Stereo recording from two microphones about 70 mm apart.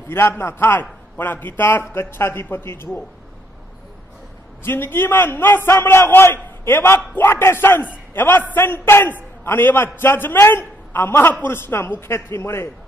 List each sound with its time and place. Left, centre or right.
0.1 s a man's voice: left
4.6 s a man's voice: left